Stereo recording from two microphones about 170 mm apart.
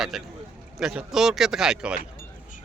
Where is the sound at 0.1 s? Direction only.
Centre (ahead or behind).